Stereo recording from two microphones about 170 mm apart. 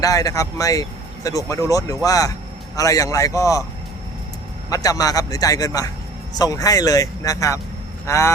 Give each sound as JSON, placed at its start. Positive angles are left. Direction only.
{"t": 0.0, "sound": "speech", "side_deg": 20}
{"t": 4.7, "sound": "speech", "side_deg": 20}